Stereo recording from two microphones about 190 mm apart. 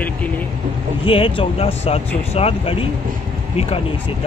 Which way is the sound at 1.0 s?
30° left (ahead or behind).